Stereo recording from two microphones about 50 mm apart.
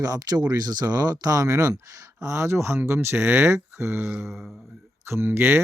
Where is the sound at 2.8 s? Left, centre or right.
Right.